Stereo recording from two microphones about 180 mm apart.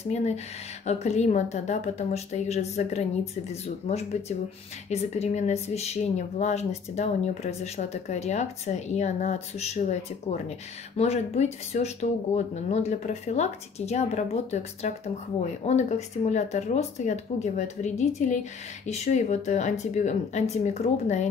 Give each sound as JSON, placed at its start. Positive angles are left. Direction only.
{"t": 0.0, "sound": "a woman's voice", "side_deg": 40}